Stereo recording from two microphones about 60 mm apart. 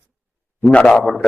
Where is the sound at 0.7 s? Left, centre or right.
Centre.